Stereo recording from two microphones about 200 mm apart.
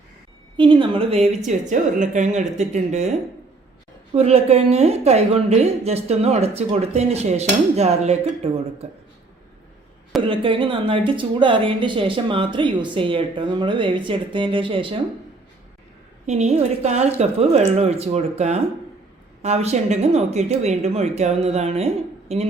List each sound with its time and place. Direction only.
0.5 s a woman's voice: 25° right (ahead or behind)
10.2 s a woman's voice: 25° right (ahead or behind)
16.2 s a woman's voice: 35° right (ahead or behind)